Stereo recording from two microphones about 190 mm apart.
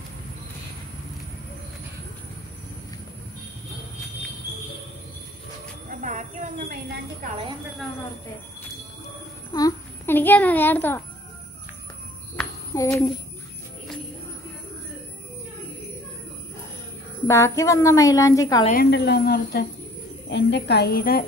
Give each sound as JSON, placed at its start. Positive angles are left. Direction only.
{"t": 5.9, "sound": "a sound", "side_deg": -40}
{"t": 9.5, "sound": "a sound", "side_deg": 20}
{"t": 12.7, "sound": "a woman's voice", "side_deg": 15}
{"t": 17.3, "sound": "a woman's voice", "side_deg": 15}
{"t": 18.7, "sound": "a woman's voice", "side_deg": 55}
{"t": 20.2, "sound": "a woman's voice", "side_deg": 65}